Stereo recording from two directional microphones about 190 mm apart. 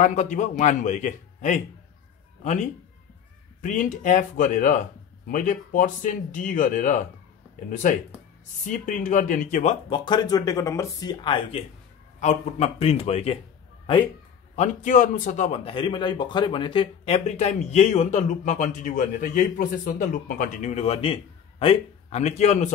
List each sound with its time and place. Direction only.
0.0 s a man's voice: 40° left (ahead or behind)
8.6 s speech: 45° left (ahead or behind); by 11.6 s 25° left (ahead or behind)
12.2 s a man's voice: 35° left (ahead or behind)
14.5 s a man's voice: 40° left (ahead or behind)